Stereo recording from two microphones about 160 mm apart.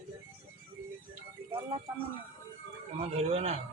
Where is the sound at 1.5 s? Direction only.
35° right (ahead or behind).